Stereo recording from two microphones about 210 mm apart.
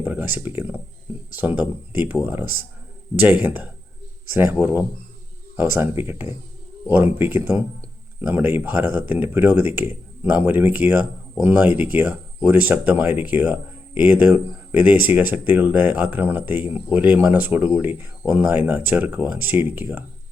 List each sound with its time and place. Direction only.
0.0 s speech: 10° right (ahead or behind)